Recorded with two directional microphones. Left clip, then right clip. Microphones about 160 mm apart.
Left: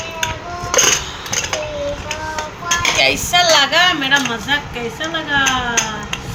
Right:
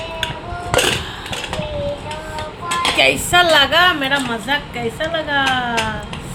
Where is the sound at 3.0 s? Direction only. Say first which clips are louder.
Right 2 dB; 65° right (ahead or behind); by 5.6 s 45° right (ahead or behind).